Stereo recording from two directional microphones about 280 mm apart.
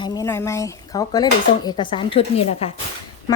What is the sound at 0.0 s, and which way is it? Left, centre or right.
Speech, centre.